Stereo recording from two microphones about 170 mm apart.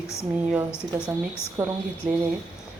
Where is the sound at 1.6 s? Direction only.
10° right (ahead or behind).